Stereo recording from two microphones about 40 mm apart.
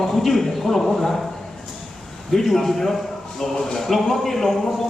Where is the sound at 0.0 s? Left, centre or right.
Centre.